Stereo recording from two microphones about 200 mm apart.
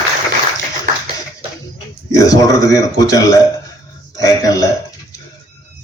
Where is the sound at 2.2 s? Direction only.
15° left (ahead or behind).